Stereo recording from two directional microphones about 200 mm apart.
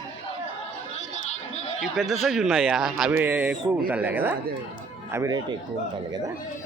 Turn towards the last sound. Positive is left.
turn(degrees=-20)  # may be behind; listen again after turning